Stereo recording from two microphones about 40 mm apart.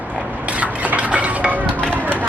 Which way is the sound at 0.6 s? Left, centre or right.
Right.